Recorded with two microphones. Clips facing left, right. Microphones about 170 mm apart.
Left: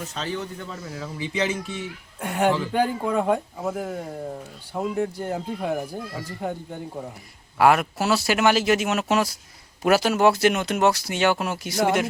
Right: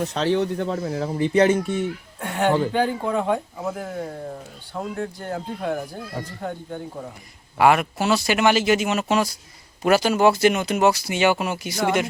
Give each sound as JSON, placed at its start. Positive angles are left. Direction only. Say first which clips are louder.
{"t": 0.1, "sound": "speech", "louder": "right 8 dB", "side_deg": -70}
{"t": 0.4, "sound": "speech", "louder": "right 10 dB", "side_deg": -60}
{"t": 2.2, "sound": "speech", "louder": "right 2 dB", "side_deg": 5}
{"t": 7.6, "sound": "speech", "louder": "right 1 dB", "side_deg": 0}